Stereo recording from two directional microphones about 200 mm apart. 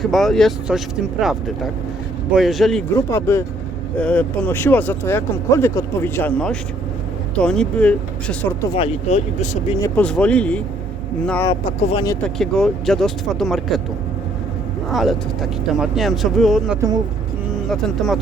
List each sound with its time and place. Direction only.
0.0 s speech: centre (ahead or behind)
2.9 s speech: 15° left (ahead or behind)
8.7 s speech: 30° left (ahead or behind)
9.8 s speech: 5° left (ahead or behind)
11.4 s speech: 25° left (ahead or behind)
12.2 s speech: centre (ahead or behind)
14.8 s speech: centre (ahead or behind)